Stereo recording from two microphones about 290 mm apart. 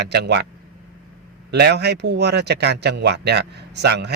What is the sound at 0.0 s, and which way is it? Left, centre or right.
Speech, right.